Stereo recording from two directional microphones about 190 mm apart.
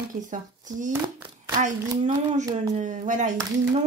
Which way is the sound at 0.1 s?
40° right (ahead or behind).